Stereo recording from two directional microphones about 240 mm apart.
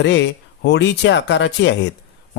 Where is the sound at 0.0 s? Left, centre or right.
Left.